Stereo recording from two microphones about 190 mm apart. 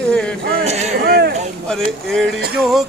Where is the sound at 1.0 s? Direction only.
55° right (ahead or behind).